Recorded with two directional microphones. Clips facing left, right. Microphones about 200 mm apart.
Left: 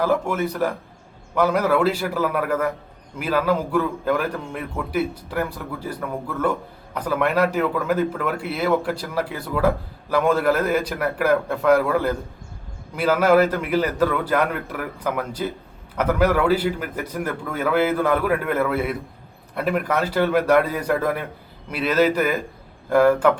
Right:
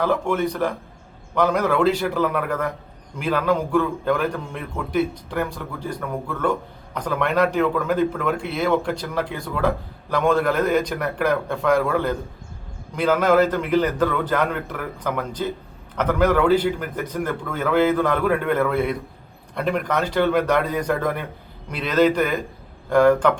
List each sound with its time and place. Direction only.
0.0 s a man's voice: 5° left (ahead or behind)